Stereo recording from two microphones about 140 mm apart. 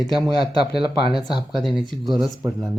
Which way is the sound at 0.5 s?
40° right (ahead or behind).